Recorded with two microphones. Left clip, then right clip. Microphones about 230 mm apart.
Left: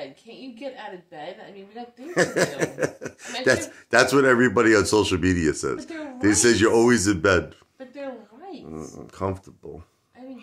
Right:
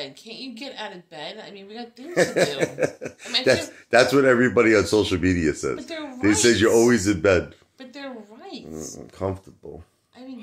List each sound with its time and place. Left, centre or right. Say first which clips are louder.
0.6 s a woman's voice: left 2 dB; right
2.1 s speech: right 2 dB; centre
8.7 s speech: right 1 dB; centre